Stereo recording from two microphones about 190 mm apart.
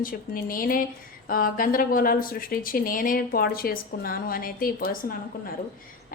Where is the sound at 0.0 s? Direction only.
50° left (ahead or behind).